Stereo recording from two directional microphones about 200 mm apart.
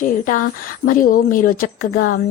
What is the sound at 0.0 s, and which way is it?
A woman's voice, 45° left (ahead or behind).